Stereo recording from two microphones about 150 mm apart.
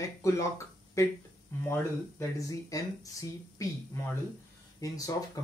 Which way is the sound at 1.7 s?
20° left (ahead or behind).